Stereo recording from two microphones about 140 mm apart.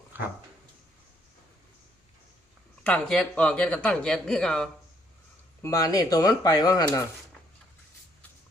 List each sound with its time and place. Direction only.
0.1 s dog: 15° right (ahead or behind)
2.8 s a man's voice: 10° left (ahead or behind)
5.6 s speech: 25° left (ahead or behind)